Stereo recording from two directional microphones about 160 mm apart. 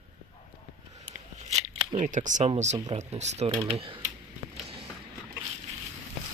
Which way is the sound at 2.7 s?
25° right (ahead or behind).